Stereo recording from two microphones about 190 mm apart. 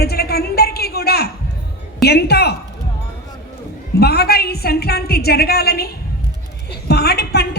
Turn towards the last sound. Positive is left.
turn(degrees=60)  # may be behind; listen again after turning